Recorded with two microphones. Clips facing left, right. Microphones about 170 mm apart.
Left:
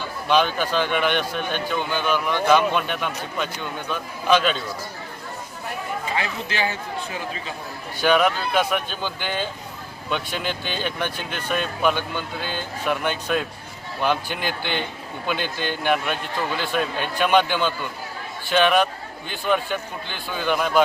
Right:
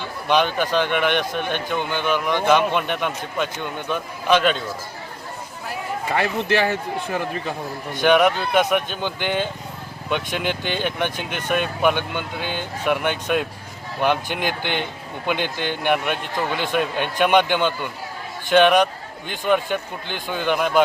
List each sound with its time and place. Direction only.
0.3 s a man's voice: 15° right (ahead or behind)
6.1 s speech: 60° right (ahead or behind)
7.9 s a man's voice: 15° right (ahead or behind)
10.5 s speech: 60° right (ahead or behind)
10.8 s a man's voice: 15° right (ahead or behind)